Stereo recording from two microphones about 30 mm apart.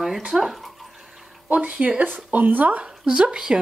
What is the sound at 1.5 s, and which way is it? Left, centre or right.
Speech, right.